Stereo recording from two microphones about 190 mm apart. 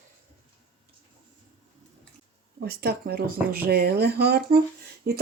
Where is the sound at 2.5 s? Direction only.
55° right (ahead or behind).